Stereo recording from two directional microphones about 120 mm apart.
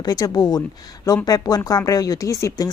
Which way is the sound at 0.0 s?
35° left (ahead or behind).